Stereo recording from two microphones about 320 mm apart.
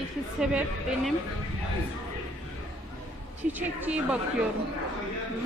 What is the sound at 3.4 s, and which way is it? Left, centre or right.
Speech, centre.